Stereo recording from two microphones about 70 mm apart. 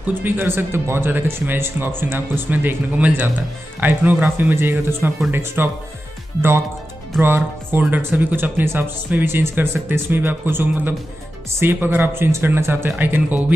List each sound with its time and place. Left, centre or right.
0.2 s speech: right
7.2 s speech: right